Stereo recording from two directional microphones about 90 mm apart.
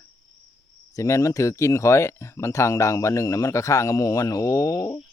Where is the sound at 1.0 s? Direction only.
35° left (ahead or behind).